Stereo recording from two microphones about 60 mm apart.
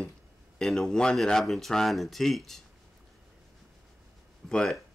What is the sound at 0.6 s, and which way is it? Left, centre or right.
Speech, centre.